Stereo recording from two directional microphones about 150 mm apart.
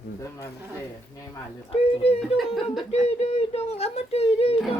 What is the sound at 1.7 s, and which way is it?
Speech, 40° left (ahead or behind).